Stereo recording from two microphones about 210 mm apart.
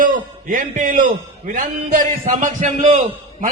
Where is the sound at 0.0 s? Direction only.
40° right (ahead or behind).